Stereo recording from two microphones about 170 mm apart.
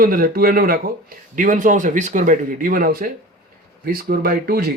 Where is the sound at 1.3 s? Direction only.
50° right (ahead or behind).